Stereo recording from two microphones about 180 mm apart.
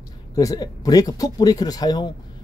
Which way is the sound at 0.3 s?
20° left (ahead or behind).